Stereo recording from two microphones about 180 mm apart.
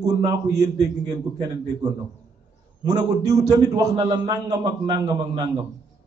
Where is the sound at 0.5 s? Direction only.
40° right (ahead or behind).